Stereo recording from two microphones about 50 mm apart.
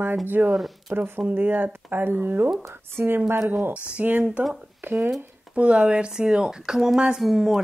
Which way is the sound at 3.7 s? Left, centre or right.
Right.